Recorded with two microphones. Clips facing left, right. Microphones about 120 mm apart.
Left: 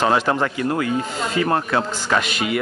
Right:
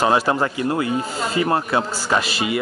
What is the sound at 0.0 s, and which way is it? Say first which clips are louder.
Speech: right 1 dB; 10° right (ahead or behind).